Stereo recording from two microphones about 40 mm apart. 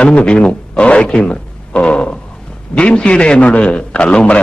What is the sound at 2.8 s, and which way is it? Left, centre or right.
A man's voice, left.